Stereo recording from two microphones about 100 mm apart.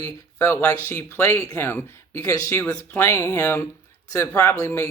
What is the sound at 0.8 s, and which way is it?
Speech, 20° left (ahead or behind).